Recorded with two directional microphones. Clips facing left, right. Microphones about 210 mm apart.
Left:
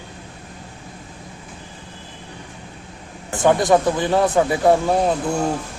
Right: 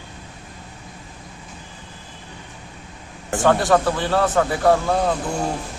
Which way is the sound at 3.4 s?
20° left (ahead or behind).